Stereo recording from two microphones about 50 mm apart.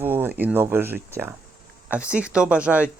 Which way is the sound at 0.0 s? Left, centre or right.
Right.